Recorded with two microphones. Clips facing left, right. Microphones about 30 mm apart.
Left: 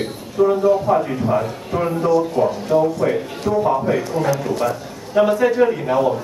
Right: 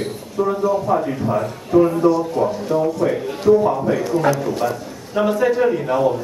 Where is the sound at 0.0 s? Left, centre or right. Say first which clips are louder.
Left 3 dB; centre.